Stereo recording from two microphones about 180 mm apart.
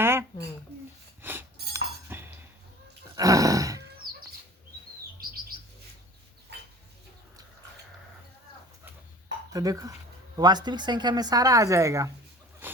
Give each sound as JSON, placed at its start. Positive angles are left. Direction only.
{"t": 0.0, "sound": "a sound", "side_deg": -15}
{"t": 1.2, "sound": "chink", "side_deg": -10}
{"t": 3.2, "sound": "roar", "side_deg": -20}
{"t": 5.2, "sound": "bird", "side_deg": -55}
{"t": 9.5, "sound": "speech", "side_deg": -20}
{"t": 12.6, "sound": "a sound", "side_deg": -10}